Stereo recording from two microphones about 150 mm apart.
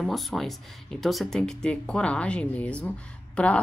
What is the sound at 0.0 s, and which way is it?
Speech, centre (ahead or behind).